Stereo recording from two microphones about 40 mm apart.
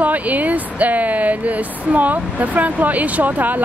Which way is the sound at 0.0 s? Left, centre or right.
Right.